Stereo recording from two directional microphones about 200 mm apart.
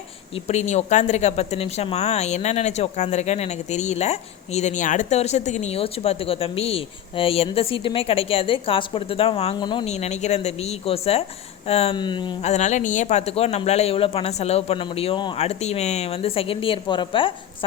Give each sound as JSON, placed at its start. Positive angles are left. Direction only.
{"t": 0.4, "sound": "speech", "side_deg": 35}
{"t": 9.8, "sound": "speech", "side_deg": 35}